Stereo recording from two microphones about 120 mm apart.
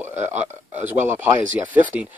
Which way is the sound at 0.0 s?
20° right (ahead or behind).